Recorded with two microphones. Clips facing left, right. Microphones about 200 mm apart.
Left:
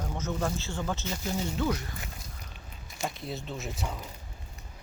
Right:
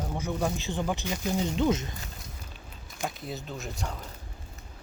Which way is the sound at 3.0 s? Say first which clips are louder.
Even; centre (ahead or behind).